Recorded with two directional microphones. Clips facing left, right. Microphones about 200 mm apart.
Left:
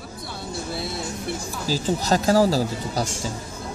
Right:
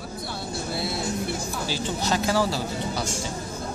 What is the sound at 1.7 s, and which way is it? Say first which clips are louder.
Speech: left 6 dB; 40° left (ahead or behind).